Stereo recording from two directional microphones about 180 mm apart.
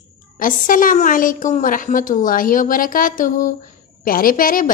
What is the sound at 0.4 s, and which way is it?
A woman's voice, 50° left (ahead or behind).